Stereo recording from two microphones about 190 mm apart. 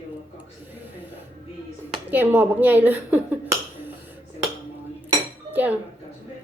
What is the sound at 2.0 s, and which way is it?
A woman's voice, 10° right (ahead or behind).